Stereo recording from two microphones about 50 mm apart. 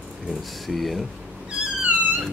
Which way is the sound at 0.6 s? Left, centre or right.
Centre.